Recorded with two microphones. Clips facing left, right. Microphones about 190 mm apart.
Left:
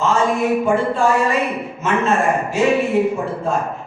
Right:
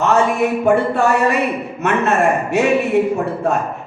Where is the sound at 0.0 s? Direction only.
65° right (ahead or behind).